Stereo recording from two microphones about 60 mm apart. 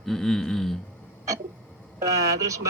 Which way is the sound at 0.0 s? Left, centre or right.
Centre.